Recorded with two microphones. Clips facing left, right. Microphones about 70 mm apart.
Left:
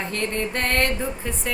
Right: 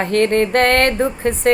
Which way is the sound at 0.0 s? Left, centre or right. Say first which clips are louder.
Right 11 dB; right.